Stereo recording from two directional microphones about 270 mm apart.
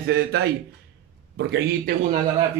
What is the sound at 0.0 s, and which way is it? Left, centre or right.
Speech, right.